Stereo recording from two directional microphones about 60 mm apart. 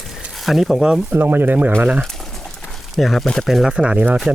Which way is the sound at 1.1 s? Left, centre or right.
Right.